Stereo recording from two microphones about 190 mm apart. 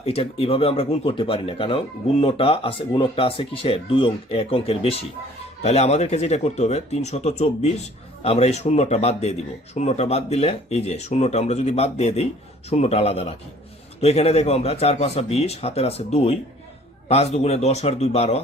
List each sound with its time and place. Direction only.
0.0 s speech: 30° left (ahead or behind)